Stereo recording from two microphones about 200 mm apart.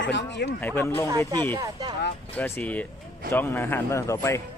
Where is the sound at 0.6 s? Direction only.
10° left (ahead or behind).